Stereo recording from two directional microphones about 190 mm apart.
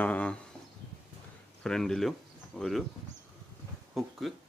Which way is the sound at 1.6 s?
5° left (ahead or behind).